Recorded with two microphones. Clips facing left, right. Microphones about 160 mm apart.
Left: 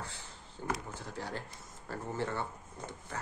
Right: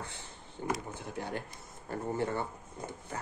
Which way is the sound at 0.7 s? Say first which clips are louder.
Right 2 dB; 15° right (ahead or behind).